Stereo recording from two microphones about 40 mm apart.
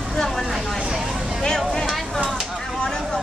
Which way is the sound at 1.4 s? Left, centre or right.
Centre.